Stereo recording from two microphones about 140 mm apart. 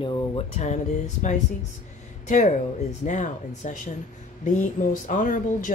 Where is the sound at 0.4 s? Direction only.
55° left (ahead or behind).